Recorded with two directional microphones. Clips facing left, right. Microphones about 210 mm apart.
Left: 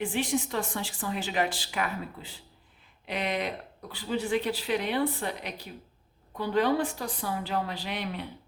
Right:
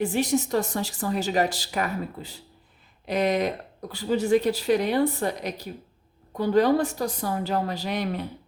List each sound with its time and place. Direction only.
0.0 s speech: 40° right (ahead or behind)